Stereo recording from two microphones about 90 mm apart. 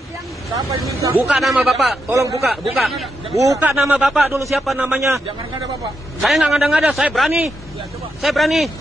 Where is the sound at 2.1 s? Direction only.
35° right (ahead or behind).